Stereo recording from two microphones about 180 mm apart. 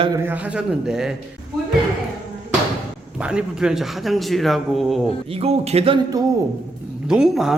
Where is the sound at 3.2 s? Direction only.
5° right (ahead or behind).